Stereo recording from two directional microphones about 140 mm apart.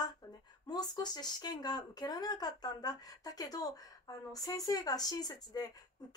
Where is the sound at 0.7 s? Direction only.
30° left (ahead or behind).